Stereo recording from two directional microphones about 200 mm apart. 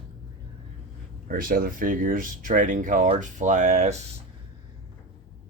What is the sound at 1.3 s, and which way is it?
Speech, 45° right (ahead or behind).